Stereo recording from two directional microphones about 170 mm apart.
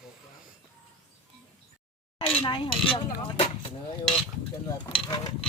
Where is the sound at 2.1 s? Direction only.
30° left (ahead or behind).